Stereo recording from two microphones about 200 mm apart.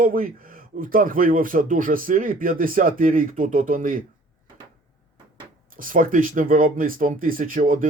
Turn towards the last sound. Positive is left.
turn(degrees=-45)  # may be behind; listen again after turning